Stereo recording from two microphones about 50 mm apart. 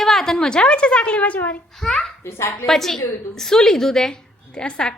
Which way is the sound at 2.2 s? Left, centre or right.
Left.